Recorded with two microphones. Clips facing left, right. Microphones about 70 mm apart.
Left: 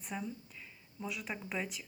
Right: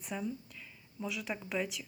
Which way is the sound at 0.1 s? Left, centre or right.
Centre.